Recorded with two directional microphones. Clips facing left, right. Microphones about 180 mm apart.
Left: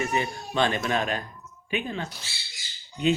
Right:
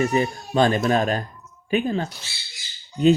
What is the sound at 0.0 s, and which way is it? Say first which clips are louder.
Speech: right 6 dB; 35° right (ahead or behind).